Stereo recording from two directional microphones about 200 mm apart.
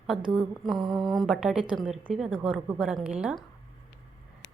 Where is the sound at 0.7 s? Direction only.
Centre (ahead or behind).